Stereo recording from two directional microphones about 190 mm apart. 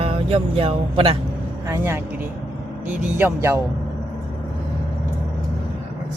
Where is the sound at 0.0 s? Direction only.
30° right (ahead or behind).